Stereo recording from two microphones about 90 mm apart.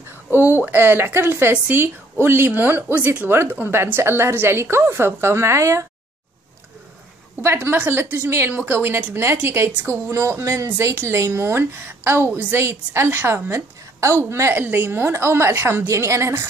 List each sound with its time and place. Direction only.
0.3 s speech: 20° right (ahead or behind)
7.4 s speech: 25° right (ahead or behind)